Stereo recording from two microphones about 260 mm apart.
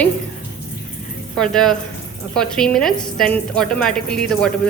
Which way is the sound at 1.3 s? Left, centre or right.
Centre.